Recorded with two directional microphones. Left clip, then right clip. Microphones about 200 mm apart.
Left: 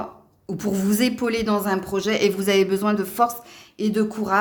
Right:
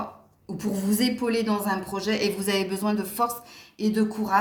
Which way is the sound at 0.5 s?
50° left (ahead or behind).